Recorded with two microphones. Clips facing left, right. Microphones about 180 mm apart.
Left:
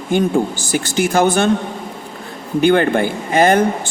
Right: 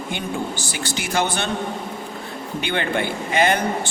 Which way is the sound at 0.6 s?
45° left (ahead or behind).